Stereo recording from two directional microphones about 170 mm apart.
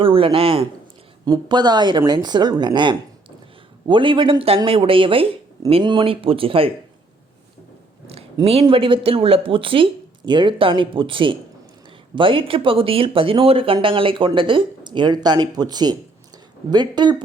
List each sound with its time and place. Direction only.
0.0 s speech: 30° right (ahead or behind)
8.4 s speech: 35° right (ahead or behind)